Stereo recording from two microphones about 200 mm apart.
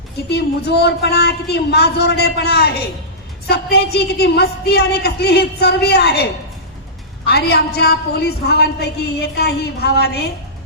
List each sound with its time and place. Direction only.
0.3 s a woman's voice: 55° left (ahead or behind)
7.3 s a woman's voice: 55° left (ahead or behind)